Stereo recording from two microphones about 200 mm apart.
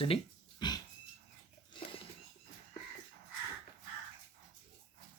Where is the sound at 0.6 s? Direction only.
20° left (ahead or behind).